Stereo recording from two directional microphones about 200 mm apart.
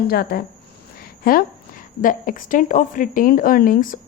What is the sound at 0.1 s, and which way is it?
Speech, 50° left (ahead or behind).